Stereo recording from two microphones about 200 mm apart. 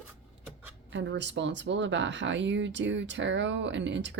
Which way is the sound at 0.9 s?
65° right (ahead or behind).